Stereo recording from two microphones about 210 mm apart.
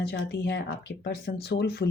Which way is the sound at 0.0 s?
50° left (ahead or behind).